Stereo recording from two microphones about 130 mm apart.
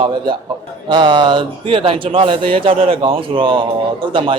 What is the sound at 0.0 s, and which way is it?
Speech, 35° right (ahead or behind).